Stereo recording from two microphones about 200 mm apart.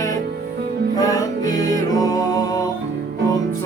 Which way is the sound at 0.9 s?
20° left (ahead or behind).